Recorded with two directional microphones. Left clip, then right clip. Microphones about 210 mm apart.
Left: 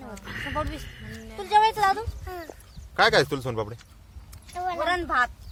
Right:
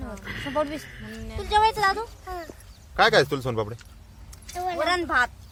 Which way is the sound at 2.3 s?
25° left (ahead or behind).